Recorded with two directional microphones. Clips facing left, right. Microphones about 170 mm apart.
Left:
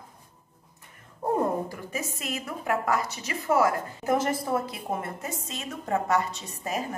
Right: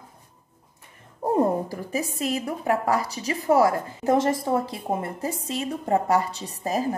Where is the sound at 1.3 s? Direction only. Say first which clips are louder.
Right 4 dB; 30° right (ahead or behind).